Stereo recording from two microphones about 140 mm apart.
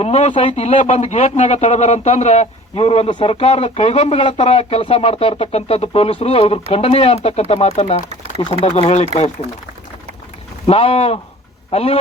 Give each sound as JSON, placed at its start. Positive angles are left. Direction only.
{"t": 0.0, "sound": "speech", "side_deg": 50}
{"t": 10.7, "sound": "speech", "side_deg": 45}